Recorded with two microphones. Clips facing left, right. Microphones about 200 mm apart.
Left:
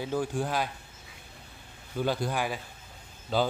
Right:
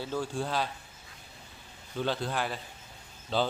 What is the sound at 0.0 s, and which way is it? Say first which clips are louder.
Speech: left 3 dB; 15° left (ahead or behind).